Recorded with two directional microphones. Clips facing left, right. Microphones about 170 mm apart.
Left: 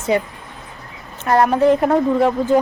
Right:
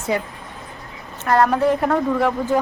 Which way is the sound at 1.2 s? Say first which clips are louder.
Left 2 dB; 20° left (ahead or behind).